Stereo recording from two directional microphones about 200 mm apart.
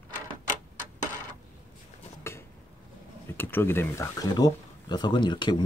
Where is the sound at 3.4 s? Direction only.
10° left (ahead or behind).